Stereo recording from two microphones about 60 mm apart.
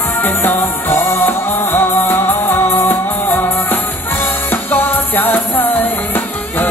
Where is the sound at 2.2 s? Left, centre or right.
Left.